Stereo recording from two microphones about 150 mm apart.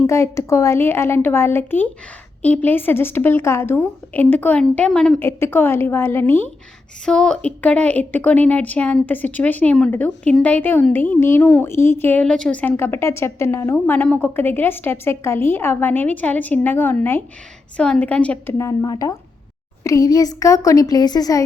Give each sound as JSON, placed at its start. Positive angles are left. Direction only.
{"t": 0.1, "sound": "a woman's voice", "side_deg": 20}
{"t": 7.0, "sound": "a woman's voice", "side_deg": 5}
{"t": 18.5, "sound": "a woman's voice", "side_deg": 20}